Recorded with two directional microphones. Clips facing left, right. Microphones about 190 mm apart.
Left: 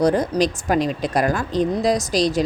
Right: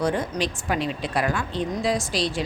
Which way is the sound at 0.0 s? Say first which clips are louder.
Left 7 dB; 40° left (ahead or behind).